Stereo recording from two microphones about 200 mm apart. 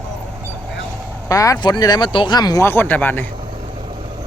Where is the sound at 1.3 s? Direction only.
15° left (ahead or behind).